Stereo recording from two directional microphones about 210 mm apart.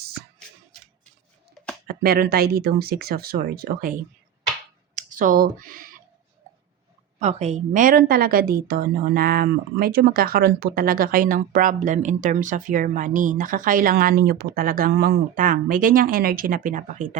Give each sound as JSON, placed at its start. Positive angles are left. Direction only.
{"t": 1.6, "sound": "a sound", "side_deg": 5}
{"t": 1.9, "sound": "a woman's voice", "side_deg": -45}
{"t": 4.9, "sound": "speech", "side_deg": -40}
{"t": 7.2, "sound": "a woman's voice", "side_deg": -30}